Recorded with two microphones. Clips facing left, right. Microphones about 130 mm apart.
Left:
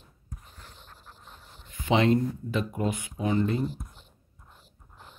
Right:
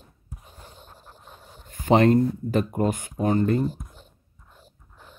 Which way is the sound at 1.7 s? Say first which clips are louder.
Right 5 dB; 45° right (ahead or behind).